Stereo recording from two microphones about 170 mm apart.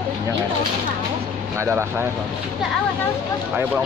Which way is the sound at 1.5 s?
15° right (ahead or behind).